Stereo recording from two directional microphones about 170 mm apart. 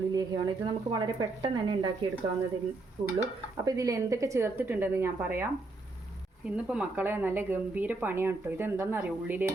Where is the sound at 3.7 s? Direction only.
20° right (ahead or behind).